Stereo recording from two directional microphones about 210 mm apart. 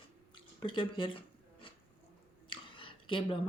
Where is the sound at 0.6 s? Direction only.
25° left (ahead or behind).